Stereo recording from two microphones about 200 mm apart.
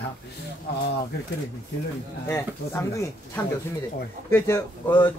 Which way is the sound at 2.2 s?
15° left (ahead or behind).